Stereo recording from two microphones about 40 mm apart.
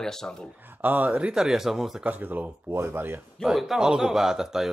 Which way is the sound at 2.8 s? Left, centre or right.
Right.